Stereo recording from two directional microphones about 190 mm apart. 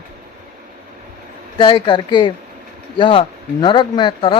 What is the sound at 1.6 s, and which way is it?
Speech, 25° left (ahead or behind).